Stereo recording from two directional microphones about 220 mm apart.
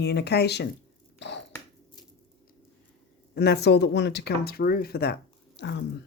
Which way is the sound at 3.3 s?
50° left (ahead or behind).